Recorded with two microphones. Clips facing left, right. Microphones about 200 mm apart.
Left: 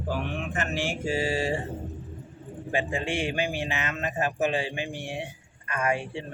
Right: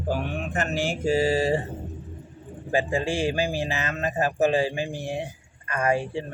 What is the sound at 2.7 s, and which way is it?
A man's voice, 35° right (ahead or behind).